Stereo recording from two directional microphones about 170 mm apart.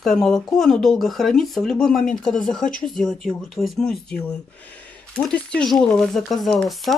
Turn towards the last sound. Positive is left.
turn(degrees=0)  # may be behind; listen again after turning